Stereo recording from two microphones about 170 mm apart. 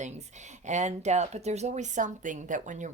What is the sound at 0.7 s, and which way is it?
Speech, 45° right (ahead or behind).